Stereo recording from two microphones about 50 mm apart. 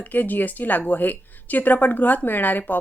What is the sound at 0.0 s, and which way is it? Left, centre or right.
Speech, left.